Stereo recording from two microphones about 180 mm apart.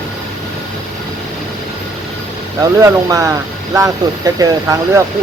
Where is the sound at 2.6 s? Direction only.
20° right (ahead or behind).